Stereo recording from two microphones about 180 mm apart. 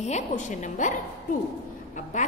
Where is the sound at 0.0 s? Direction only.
40° left (ahead or behind).